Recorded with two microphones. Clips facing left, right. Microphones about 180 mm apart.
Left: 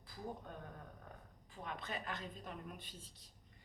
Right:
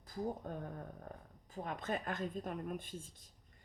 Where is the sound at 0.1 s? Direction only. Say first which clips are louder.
Right 7 dB; 40° right (ahead or behind).